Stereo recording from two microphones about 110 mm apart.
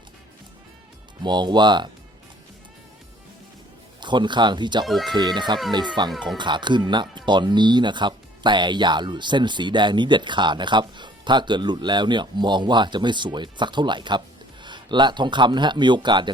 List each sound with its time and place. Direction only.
1.2 s speech: 45° right (ahead or behind)
4.0 s speech: 45° right (ahead or behind)
4.9 s speech: centre (ahead or behind)
5.1 s speech: 45° right (ahead or behind)
6.1 s speech: centre (ahead or behind)
6.3 s a man's voice: 45° right (ahead or behind)